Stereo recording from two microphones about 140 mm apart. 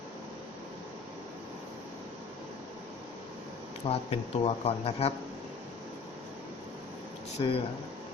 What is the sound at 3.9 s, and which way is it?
Speech, 45° left (ahead or behind).